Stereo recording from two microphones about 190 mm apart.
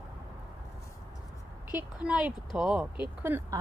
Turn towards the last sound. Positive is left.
turn(degrees=-10)  # may be behind; listen again after turning